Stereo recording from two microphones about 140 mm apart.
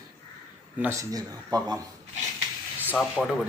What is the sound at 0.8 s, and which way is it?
Speech, 20° right (ahead or behind).